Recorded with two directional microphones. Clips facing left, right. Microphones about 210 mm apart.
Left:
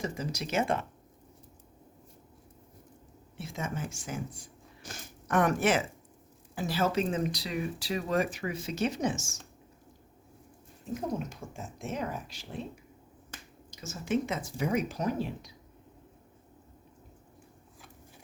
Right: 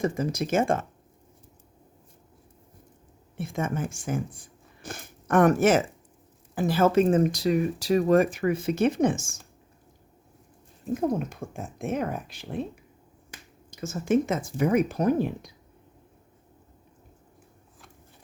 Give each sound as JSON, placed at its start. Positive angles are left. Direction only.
{"t": 0.0, "sound": "speech", "side_deg": -50}
{"t": 3.3, "sound": "speech", "side_deg": -55}
{"t": 10.9, "sound": "speech", "side_deg": -55}
{"t": 13.7, "sound": "speech", "side_deg": -55}